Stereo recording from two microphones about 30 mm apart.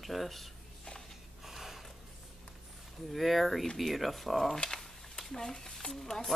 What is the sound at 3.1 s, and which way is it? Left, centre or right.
Speech, centre.